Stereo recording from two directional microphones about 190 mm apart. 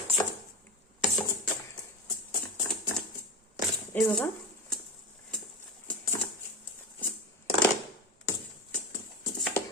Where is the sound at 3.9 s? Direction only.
5° left (ahead or behind).